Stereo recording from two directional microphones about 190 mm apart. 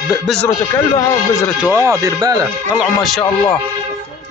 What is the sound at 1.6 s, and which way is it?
Speech, 15° right (ahead or behind).